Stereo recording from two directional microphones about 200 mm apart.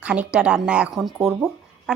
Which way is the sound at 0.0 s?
5° right (ahead or behind).